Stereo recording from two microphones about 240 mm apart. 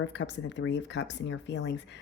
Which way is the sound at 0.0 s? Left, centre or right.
Left.